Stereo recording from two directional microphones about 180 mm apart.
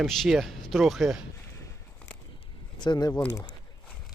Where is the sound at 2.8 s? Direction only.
25° left (ahead or behind).